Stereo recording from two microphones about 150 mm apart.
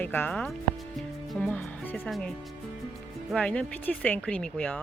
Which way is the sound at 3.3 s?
5° left (ahead or behind).